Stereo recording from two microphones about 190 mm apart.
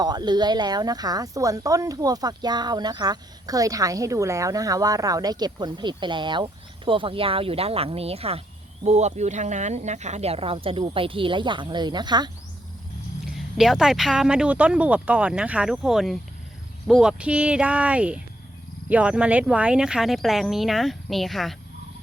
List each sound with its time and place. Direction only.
0.0 s speech: 20° right (ahead or behind)
13.2 s speech: centre (ahead or behind)